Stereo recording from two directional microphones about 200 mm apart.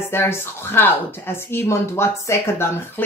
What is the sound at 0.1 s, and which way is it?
A woman's voice, 10° left (ahead or behind).